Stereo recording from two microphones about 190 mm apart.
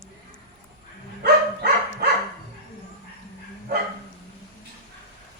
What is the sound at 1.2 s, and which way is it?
Dog, 55° right (ahead or behind).